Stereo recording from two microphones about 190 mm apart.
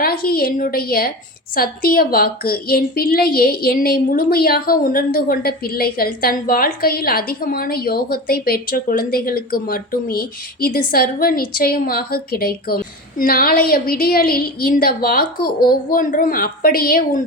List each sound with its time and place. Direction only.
0.0 s a woman's voice: 50° left (ahead or behind)